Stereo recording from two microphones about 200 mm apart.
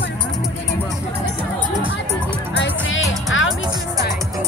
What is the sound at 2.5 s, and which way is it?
Music, 65° left (ahead or behind).